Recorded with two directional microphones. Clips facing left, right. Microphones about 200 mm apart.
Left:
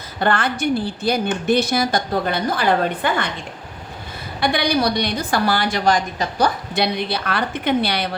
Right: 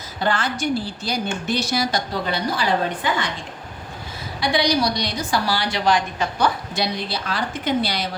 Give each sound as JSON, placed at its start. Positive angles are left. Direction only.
{"t": 0.2, "sound": "a woman's voice", "side_deg": 60}
{"t": 4.4, "sound": "a woman's voice", "side_deg": 55}
{"t": 6.7, "sound": "a woman's voice", "side_deg": 60}